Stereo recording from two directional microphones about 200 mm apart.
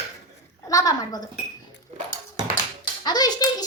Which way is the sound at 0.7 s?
15° left (ahead or behind).